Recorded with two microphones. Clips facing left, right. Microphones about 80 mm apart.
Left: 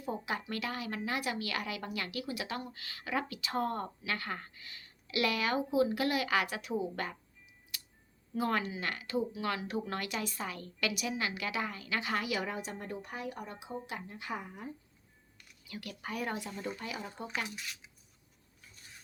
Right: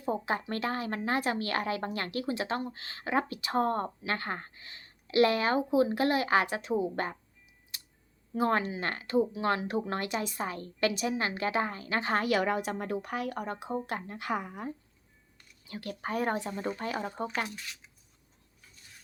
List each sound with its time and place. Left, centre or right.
0.1 s a woman's voice: right
7.7 s a sound: right
8.4 s speech: right
15.4 s speech: right